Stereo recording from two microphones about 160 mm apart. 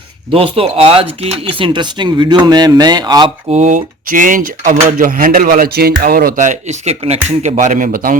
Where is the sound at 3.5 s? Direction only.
50° right (ahead or behind).